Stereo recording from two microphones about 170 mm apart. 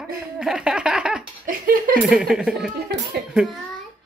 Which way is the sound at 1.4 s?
55° right (ahead or behind).